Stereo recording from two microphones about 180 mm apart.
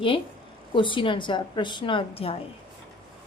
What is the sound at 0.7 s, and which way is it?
A woman's voice, 25° left (ahead or behind).